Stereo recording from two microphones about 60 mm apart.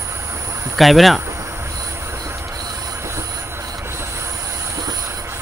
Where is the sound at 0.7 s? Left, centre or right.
Centre.